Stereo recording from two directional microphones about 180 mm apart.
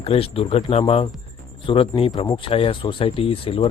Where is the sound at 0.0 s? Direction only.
30° left (ahead or behind).